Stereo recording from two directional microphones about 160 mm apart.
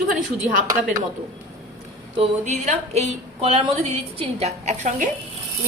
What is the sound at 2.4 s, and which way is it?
A woman's voice, 45° right (ahead or behind).